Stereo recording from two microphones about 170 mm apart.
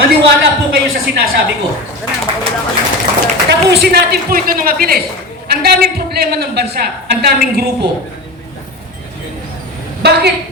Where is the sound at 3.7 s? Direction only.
70° right (ahead or behind).